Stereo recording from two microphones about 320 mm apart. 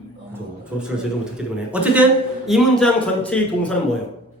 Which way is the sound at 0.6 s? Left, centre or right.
Centre.